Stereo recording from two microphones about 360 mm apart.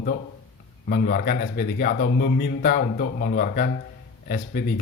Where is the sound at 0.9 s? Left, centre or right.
Left.